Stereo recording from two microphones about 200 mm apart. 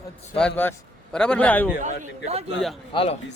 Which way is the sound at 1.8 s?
35° right (ahead or behind).